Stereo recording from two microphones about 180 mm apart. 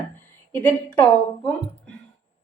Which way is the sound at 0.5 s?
10° left (ahead or behind).